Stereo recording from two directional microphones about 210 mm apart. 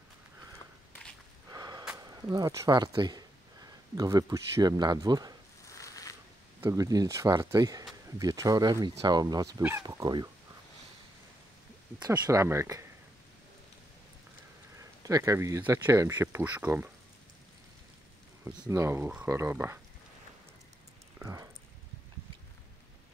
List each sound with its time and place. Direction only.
1.5 s gasp: 20° right (ahead or behind)
2.0 s speech: 15° right (ahead or behind)
5.7 s a sound: 15° left (ahead or behind)
6.6 s speech: 15° right (ahead or behind)
9.8 s speech: 20° right (ahead or behind)
12.1 s speech: 15° right (ahead or behind)
14.8 s speech: 15° right (ahead or behind)
18.4 s speech: 15° right (ahead or behind)
21.2 s speech: 15° right (ahead or behind)